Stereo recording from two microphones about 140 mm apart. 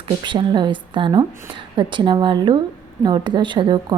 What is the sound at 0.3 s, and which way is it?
A woman's voice, 35° right (ahead or behind).